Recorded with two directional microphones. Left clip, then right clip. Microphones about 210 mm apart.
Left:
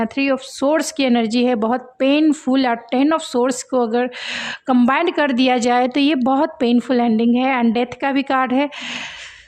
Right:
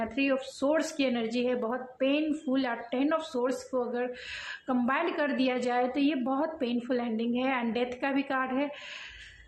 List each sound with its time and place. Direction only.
0.0 s speech: 45° left (ahead or behind)